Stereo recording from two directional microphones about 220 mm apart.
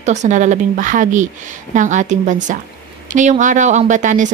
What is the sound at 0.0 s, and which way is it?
Speech, 30° right (ahead or behind).